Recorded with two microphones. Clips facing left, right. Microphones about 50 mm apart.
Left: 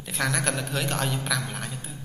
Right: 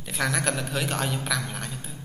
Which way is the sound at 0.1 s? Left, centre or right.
Centre.